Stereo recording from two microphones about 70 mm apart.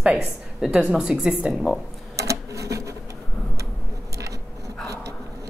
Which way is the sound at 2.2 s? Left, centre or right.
Right.